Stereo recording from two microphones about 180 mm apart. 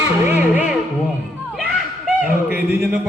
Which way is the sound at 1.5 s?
Centre (ahead or behind).